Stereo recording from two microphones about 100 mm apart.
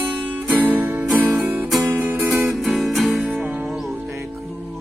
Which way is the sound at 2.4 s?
5° right (ahead or behind).